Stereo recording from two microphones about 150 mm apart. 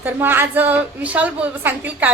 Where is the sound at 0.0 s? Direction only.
15° right (ahead or behind).